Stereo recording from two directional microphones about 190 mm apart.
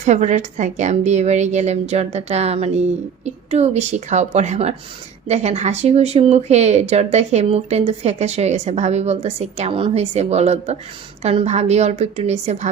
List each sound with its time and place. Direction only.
0.0 s speech: 35° right (ahead or behind)